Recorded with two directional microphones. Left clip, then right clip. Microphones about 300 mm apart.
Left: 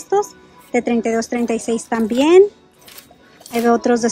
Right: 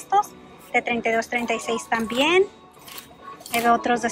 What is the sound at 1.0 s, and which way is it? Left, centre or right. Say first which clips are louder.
Speech: left 3 dB; centre.